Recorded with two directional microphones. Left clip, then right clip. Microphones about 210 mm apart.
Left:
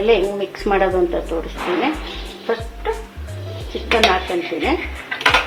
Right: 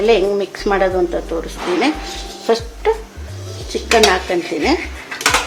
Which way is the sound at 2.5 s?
55° right (ahead or behind).